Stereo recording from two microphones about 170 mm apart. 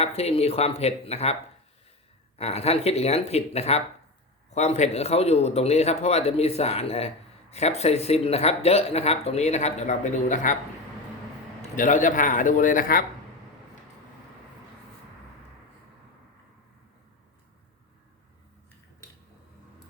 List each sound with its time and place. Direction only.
0.0 s speech: 35° left (ahead or behind)
2.4 s speech: 35° left (ahead or behind)
11.8 s a man's voice: 50° left (ahead or behind)